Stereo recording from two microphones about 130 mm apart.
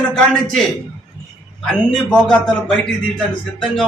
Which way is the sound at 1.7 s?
5° left (ahead or behind).